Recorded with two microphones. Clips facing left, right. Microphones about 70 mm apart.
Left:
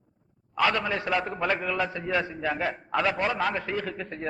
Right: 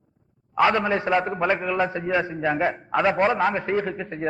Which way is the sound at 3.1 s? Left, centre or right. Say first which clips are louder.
Right 6 dB; right.